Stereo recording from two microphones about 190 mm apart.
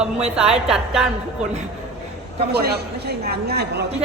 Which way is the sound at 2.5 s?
55° right (ahead or behind).